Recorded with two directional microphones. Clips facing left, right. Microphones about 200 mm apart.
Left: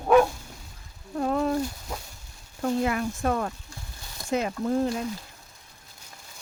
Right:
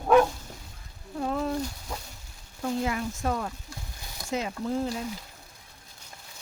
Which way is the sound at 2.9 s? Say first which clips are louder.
Left 3 dB; 60° left (ahead or behind).